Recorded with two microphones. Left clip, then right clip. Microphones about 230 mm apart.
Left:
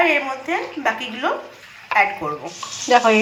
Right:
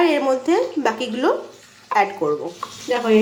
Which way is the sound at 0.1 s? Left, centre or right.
Right.